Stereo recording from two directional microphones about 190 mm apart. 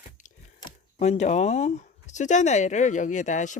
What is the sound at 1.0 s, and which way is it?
Speech, 35° left (ahead or behind).